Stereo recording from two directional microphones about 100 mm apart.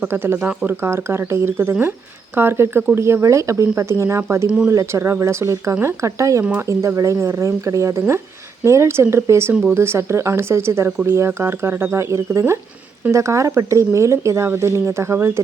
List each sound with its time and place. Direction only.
0.1 s speech: 25° right (ahead or behind)